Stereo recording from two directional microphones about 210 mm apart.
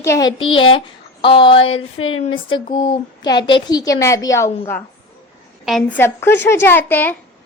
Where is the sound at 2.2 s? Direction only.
25° left (ahead or behind).